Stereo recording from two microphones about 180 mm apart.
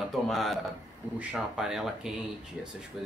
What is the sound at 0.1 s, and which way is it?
Speech, centre (ahead or behind).